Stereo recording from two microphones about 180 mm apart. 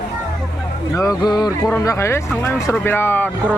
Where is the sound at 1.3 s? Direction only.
20° left (ahead or behind).